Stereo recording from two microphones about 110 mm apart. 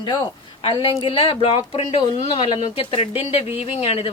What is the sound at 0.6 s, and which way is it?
Speech, 55° left (ahead or behind).